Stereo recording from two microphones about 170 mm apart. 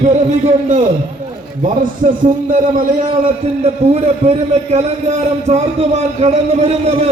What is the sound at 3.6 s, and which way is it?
A man's voice, 35° right (ahead or behind).